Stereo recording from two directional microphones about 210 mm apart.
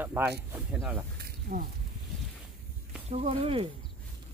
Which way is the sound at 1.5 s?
50° right (ahead or behind).